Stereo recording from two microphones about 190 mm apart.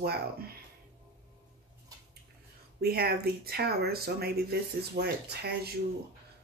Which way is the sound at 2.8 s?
55° right (ahead or behind).